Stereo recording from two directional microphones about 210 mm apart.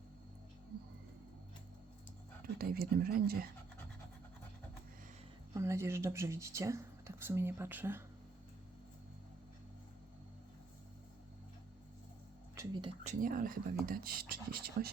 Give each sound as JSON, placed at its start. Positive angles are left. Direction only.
{"t": 2.6, "sound": "speech", "side_deg": -45}
{"t": 5.5, "sound": "speech", "side_deg": -15}
{"t": 12.5, "sound": "speech", "side_deg": -20}
{"t": 13.1, "sound": "speech", "side_deg": -40}